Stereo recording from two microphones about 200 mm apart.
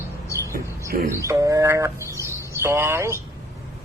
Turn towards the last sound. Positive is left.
turn(degrees=-15)  # may be behind; listen again after turning